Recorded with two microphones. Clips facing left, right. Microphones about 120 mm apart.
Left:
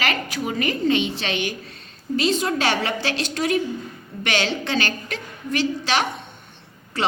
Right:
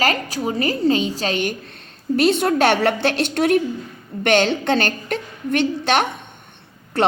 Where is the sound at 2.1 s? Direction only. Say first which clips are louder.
Right 5 dB; 60° right (ahead or behind).